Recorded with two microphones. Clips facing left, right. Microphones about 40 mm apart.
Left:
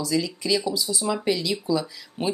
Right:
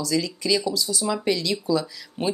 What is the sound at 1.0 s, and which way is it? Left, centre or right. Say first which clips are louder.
Speech: even; centre.